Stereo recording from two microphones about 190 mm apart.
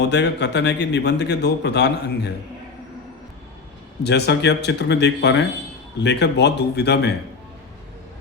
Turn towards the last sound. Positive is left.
turn(degrees=60)  # may be behind; listen again after turning